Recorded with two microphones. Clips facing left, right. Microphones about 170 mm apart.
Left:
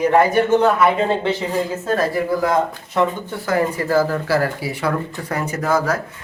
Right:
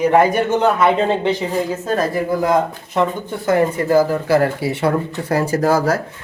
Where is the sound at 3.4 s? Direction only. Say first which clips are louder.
Right 4 dB; 20° right (ahead or behind).